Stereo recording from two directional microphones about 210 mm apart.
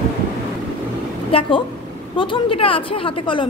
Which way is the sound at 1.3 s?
25° left (ahead or behind).